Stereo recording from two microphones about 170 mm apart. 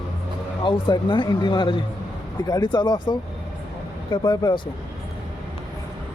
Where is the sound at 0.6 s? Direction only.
30° left (ahead or behind).